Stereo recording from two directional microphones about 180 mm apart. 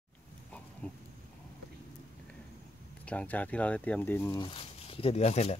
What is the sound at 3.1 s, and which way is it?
Speech, 10° left (ahead or behind).